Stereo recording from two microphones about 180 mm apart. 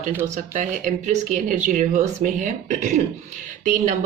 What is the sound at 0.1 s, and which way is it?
Speech, 10° right (ahead or behind).